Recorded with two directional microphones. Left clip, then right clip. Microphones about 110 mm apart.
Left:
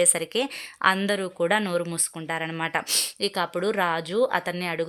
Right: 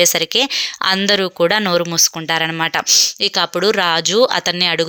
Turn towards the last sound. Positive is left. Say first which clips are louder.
# right 12 dB
turn(degrees=-25)  # may be behind; listen again after turning